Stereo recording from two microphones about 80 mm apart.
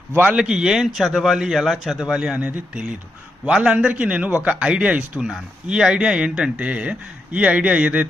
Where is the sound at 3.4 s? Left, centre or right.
Centre.